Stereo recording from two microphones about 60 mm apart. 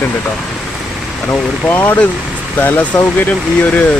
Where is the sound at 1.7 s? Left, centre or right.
Left.